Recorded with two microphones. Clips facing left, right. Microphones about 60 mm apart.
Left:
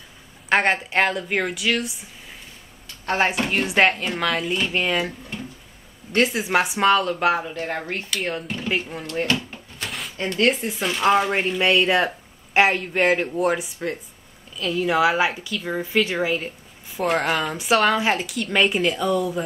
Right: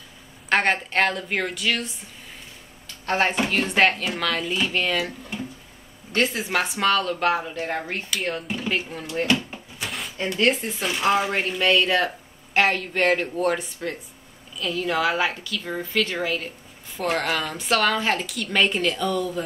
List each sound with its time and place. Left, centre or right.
0.5 s speech: centre
3.1 s speech: centre
6.1 s speech: centre
9.0 s speech: centre
11.3 s speech: centre